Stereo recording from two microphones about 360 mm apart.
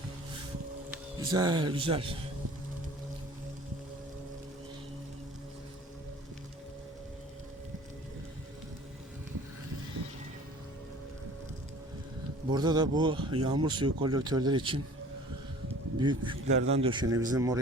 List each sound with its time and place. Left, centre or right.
1.3 s speech: centre
12.5 s speech: centre
16.0 s speech: centre